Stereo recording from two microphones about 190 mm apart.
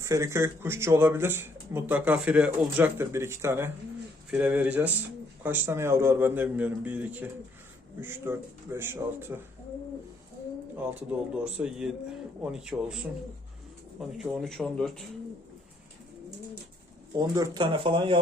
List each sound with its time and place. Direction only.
0.0 s speech: 15° right (ahead or behind)
11.5 s speech: 5° right (ahead or behind)
14.2 s speech: centre (ahead or behind)
17.2 s speech: 20° right (ahead or behind)